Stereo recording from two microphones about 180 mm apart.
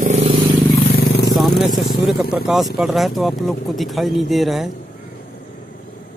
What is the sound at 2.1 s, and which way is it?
Speech, centre (ahead or behind).